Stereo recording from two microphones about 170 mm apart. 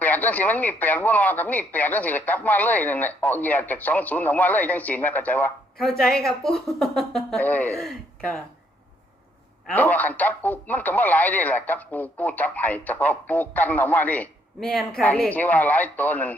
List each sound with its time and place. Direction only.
0.0 s a woman's voice: 10° left (ahead or behind)
9.6 s speech: 10° left (ahead or behind)